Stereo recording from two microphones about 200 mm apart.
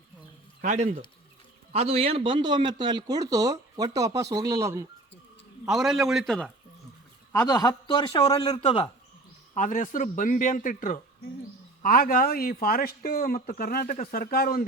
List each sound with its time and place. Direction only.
0.6 s speech: 35° right (ahead or behind); by 4.9 s 15° right (ahead or behind)
5.6 s a man's voice: centre (ahead or behind)
7.3 s a man's voice: 20° left (ahead or behind)
9.6 s speech: 40° left (ahead or behind)